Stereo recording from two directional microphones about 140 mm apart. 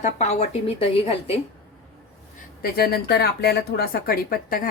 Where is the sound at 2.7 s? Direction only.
90° left.